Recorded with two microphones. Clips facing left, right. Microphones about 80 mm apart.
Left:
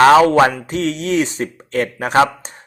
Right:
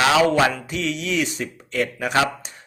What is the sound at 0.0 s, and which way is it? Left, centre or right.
Speech, left.